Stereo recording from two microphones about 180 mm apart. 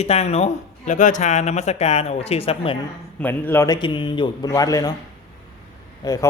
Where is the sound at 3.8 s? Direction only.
25° left (ahead or behind).